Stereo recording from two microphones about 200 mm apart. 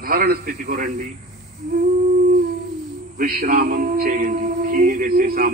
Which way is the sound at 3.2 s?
45° right (ahead or behind).